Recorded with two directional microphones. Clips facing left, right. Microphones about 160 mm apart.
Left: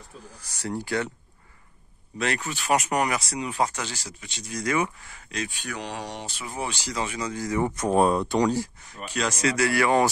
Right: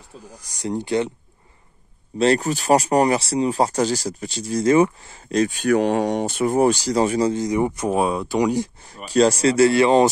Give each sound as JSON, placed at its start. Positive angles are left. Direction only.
{"t": 0.3, "sound": "speech", "side_deg": -15}
{"t": 2.1, "sound": "speech", "side_deg": -35}
{"t": 7.3, "sound": "speech", "side_deg": -15}
{"t": 8.4, "sound": "speech", "side_deg": -15}
{"t": 9.0, "sound": "speech", "side_deg": -35}